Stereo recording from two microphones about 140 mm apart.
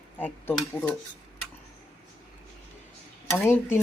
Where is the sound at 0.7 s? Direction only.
10° left (ahead or behind).